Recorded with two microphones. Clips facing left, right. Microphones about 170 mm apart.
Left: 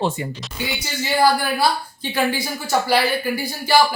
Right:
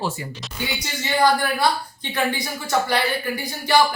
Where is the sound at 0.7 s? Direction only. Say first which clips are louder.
Left 2 dB; 5° left (ahead or behind).